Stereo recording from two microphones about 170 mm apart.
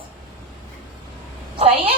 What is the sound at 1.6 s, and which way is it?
Speech, 35° right (ahead or behind).